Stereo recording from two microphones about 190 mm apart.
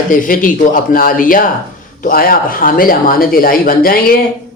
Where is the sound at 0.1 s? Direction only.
45° left (ahead or behind).